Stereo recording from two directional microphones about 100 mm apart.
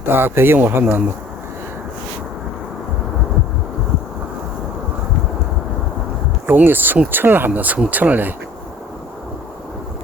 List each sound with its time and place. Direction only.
0.0 s speech: 20° right (ahead or behind)
6.5 s speech: 20° right (ahead or behind)